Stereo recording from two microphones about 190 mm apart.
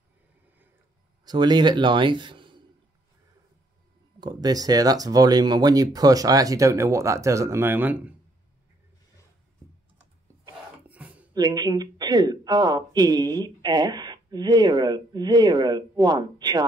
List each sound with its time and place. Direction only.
1.2 s speech: 20° right (ahead or behind)
4.2 s speech: 20° right (ahead or behind)
10.9 s a sound: 10° right (ahead or behind)
11.3 s speech: 20° right (ahead or behind)